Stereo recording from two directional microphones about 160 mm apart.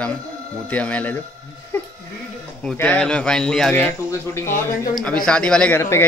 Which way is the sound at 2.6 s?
10° left (ahead or behind).